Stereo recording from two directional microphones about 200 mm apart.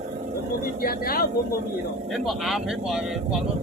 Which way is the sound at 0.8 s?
50° left (ahead or behind).